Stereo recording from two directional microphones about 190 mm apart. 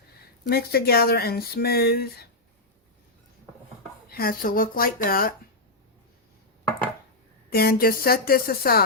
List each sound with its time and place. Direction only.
0.4 s speech: 55° left (ahead or behind)
4.1 s speech: 50° left (ahead or behind)
7.5 s speech: 55° left (ahead or behind)